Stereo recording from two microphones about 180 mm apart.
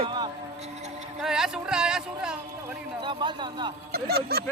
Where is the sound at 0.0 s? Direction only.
25° right (ahead or behind).